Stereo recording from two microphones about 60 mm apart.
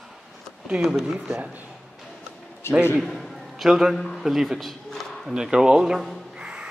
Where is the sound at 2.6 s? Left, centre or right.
Left.